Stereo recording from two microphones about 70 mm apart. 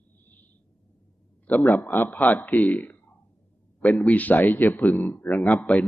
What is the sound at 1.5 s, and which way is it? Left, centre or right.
A man's voice, left.